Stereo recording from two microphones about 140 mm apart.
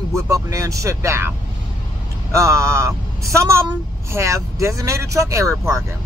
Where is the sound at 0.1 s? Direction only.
20° right (ahead or behind).